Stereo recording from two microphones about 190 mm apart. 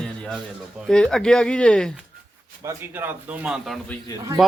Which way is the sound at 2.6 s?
15° right (ahead or behind).